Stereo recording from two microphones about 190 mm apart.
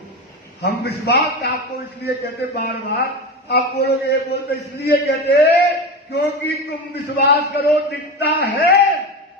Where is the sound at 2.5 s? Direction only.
60° left (ahead or behind).